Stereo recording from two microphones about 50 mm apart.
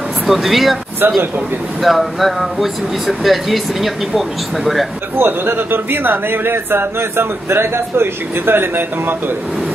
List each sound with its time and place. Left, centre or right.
0.3 s speech: centre
1.0 s speech: right
1.8 s speech: centre
5.1 s speech: right